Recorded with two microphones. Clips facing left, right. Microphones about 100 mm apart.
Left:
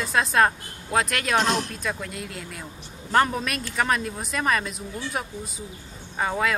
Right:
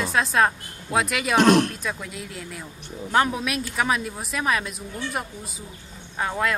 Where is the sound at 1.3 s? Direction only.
60° right (ahead or behind).